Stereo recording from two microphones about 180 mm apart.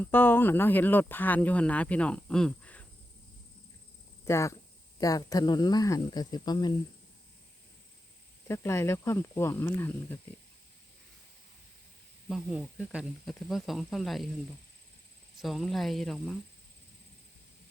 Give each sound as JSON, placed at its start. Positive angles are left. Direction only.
{"t": 0.0, "sound": "speech", "side_deg": 10}
{"t": 4.3, "sound": "speech", "side_deg": 15}
{"t": 8.4, "sound": "speech", "side_deg": 15}
{"t": 12.3, "sound": "speech", "side_deg": -5}
{"t": 15.4, "sound": "speech", "side_deg": 0}